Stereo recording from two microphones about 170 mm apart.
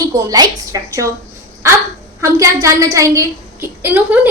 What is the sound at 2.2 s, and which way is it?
A woman's voice, 20° right (ahead or behind).